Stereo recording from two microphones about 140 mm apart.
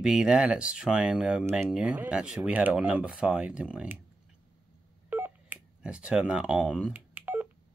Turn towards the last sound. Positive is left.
turn(degrees=-15)  # may be behind; listen again after turning